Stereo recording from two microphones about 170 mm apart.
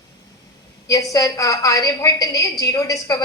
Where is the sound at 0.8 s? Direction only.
20° left (ahead or behind).